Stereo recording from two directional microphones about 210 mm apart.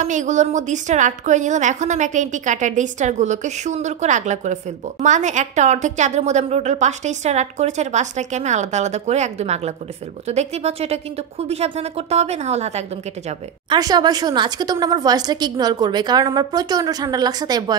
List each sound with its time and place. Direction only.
0.0 s a woman's voice: 35° right (ahead or behind)
13.7 s a woman's voice: 20° right (ahead or behind)